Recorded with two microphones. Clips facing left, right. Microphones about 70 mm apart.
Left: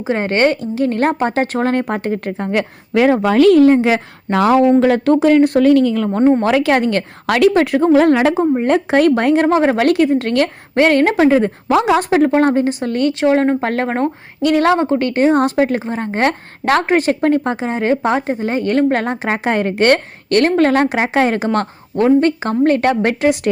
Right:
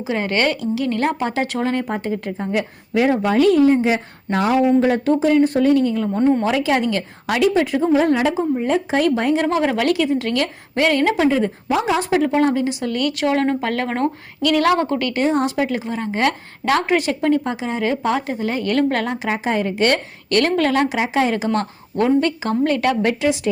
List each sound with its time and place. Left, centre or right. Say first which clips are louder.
0.0 s a woman's voice: left 5 dB; left
4.8 s speech: left 4 dB; left
6.1 s a woman's voice: left 4 dB; left
6.4 s a woman's voice: left 4 dB; left
7.3 s a woman's voice: left 5 dB; left
11.7 s speech: left 6 dB; left
11.9 s a woman's voice: left 4 dB; left
19.3 s a woman's voice: left 4 dB; left